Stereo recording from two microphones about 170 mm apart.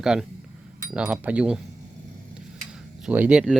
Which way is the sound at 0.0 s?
5° right (ahead or behind).